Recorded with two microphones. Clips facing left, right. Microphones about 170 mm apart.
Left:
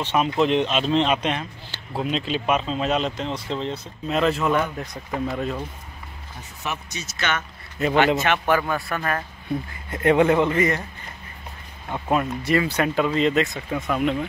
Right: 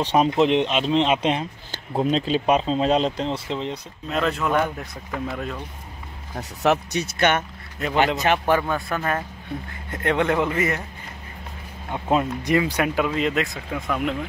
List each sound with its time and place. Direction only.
0.0 s speech: 35° right (ahead or behind)
0.4 s speech: 20° right (ahead or behind)
1.7 s speech: 40° right (ahead or behind)
3.5 s speech: 15° right (ahead or behind)
4.1 s speech: centre (ahead or behind)
6.3 s speech: 75° right (ahead or behind); by 7.4 s 55° right (ahead or behind)
8.2 s speech: 30° right (ahead or behind)
8.6 s speech: centre (ahead or behind)
10.4 s speech: 5° right (ahead or behind)
11.9 s speech: 20° right (ahead or behind); by 14.1 s centre (ahead or behind)